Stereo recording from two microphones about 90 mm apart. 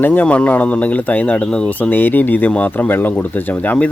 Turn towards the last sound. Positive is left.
turn(degrees=15)  # may be behind; listen again after turning